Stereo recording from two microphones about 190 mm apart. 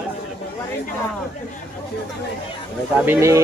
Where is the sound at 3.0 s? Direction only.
10° right (ahead or behind).